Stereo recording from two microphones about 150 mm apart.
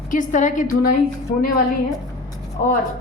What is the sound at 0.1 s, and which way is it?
Speech, 60° left (ahead or behind).